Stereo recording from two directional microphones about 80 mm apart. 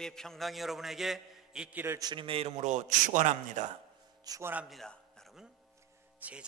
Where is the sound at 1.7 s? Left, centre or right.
Right.